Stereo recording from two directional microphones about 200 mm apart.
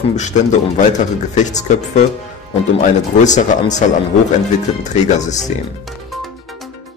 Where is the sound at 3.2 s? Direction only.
35° left (ahead or behind).